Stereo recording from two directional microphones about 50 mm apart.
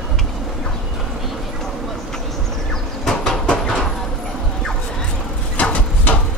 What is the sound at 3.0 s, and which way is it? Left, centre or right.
Train, centre.